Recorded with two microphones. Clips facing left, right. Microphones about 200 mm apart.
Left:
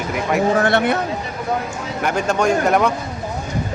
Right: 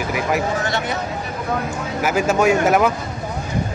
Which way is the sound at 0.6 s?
60° left (ahead or behind).